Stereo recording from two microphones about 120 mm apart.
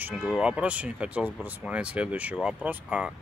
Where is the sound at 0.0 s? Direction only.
10° right (ahead or behind).